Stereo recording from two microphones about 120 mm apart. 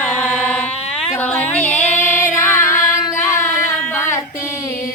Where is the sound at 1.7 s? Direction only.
15° left (ahead or behind).